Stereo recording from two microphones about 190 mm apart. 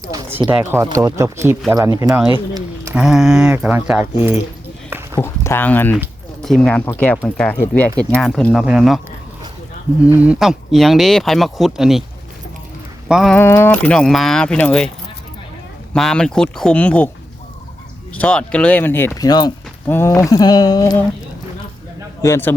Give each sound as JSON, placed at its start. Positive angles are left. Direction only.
{"t": 0.1, "sound": "speech", "side_deg": -10}
{"t": 2.3, "sound": "a sound", "side_deg": -20}
{"t": 2.9, "sound": "speech", "side_deg": -5}
{"t": 4.9, "sound": "a sound", "side_deg": -10}
{"t": 5.2, "sound": "speech", "side_deg": 15}
{"t": 10.0, "sound": "speech", "side_deg": -5}
{"t": 13.1, "sound": "speech", "side_deg": 0}
{"t": 13.4, "sound": "speech", "side_deg": 10}
{"t": 15.9, "sound": "speech", "side_deg": 5}
{"t": 18.1, "sound": "speech", "side_deg": 5}
{"t": 22.2, "sound": "speech", "side_deg": 15}